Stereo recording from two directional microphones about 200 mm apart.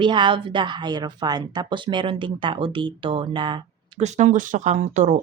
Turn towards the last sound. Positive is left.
turn(degrees=-35)  # may be behind; listen again after turning